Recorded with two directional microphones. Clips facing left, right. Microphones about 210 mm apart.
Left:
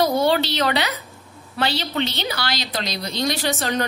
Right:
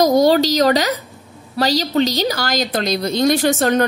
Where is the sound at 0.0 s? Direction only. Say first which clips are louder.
Right 6 dB; 40° right (ahead or behind).